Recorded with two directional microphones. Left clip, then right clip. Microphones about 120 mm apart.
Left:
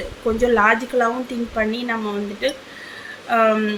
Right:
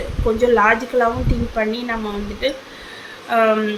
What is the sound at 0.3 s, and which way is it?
A woman's voice, 25° left (ahead or behind).